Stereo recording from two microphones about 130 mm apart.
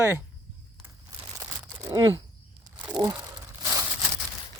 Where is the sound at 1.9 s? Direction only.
35° right (ahead or behind).